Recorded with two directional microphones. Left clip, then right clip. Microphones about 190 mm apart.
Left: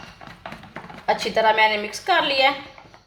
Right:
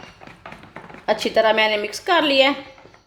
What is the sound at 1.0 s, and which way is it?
A woman's voice, 45° right (ahead or behind).